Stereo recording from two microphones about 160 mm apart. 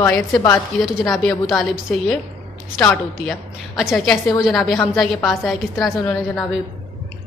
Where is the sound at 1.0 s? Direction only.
Centre (ahead or behind).